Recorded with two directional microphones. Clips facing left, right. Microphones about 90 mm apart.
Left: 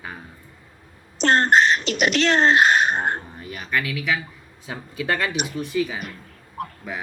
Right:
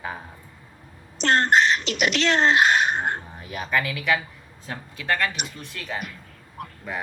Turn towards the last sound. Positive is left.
turn(degrees=5)  # may be behind; listen again after turning